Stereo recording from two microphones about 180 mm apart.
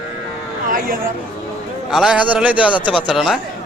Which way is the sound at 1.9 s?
5° right (ahead or behind).